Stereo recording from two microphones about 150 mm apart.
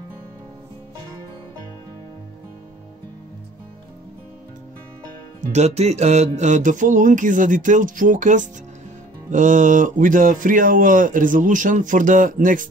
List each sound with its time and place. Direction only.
5.5 s speech: 50° right (ahead or behind); by 12.6 s 65° right (ahead or behind)